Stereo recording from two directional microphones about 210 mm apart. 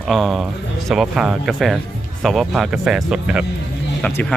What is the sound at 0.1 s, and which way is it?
Speech, centre (ahead or behind).